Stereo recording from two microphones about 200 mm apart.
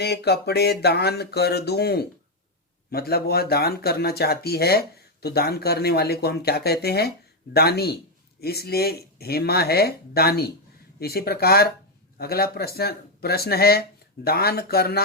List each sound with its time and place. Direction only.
0.0 s speech: 55° left (ahead or behind)